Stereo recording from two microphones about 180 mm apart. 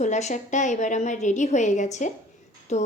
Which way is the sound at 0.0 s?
40° left (ahead or behind).